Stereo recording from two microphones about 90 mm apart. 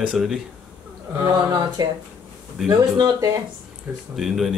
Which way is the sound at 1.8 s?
50° right (ahead or behind).